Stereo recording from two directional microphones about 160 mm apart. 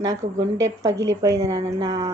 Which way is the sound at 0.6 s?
20° right (ahead or behind).